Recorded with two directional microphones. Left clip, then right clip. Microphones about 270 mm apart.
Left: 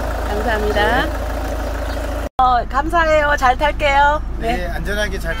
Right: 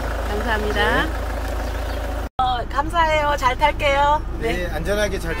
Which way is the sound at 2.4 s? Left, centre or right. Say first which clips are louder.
Left 6 dB; centre.